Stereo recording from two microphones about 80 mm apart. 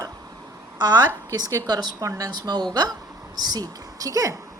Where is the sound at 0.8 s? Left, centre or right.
Right.